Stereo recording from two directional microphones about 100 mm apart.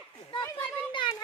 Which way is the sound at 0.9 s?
50° left (ahead or behind).